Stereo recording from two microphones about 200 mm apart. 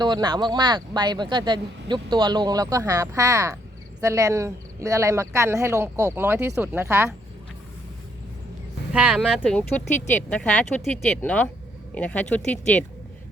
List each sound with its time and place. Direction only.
0.0 s speech: 20° right (ahead or behind)
8.9 s speech: 5° right (ahead or behind)
9.2 s speech: 5° left (ahead or behind)